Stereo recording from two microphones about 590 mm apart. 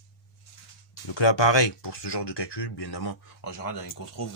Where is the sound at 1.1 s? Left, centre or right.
Left.